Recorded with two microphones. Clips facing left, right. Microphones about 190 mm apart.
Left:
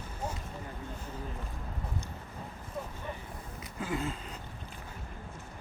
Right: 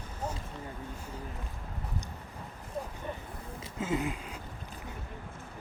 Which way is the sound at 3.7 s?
20° right (ahead or behind).